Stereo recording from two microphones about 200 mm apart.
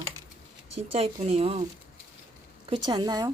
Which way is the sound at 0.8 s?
30° right (ahead or behind).